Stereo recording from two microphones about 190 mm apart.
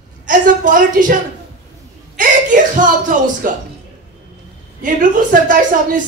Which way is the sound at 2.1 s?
45° right (ahead or behind).